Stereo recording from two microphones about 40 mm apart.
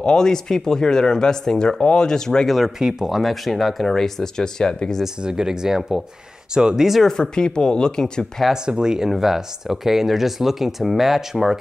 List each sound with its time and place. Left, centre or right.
0.0 s speech: centre
2.5 s speech: centre
3.9 s speech: centre
5.2 s speech: centre
7.1 s speech: centre
8.6 s speech: centre